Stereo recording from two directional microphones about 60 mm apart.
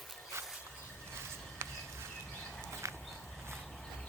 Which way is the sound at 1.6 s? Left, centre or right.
Right.